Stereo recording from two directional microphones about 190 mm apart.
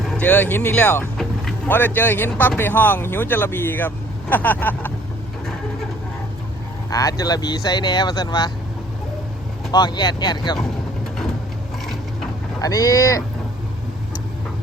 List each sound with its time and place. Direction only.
0.1 s speech: 10° left (ahead or behind)
6.9 s speech: 20° left (ahead or behind)
9.7 s speech: 20° left (ahead or behind)
12.6 s speech: 20° left (ahead or behind)